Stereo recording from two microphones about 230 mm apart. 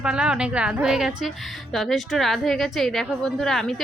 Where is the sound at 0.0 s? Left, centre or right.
Centre.